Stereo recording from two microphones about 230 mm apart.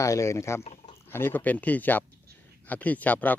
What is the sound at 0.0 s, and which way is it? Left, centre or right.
Speech, centre.